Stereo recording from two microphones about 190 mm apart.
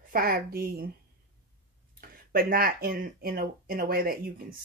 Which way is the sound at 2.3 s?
50° right (ahead or behind).